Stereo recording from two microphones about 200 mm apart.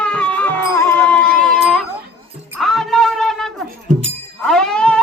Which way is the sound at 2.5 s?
Centre (ahead or behind).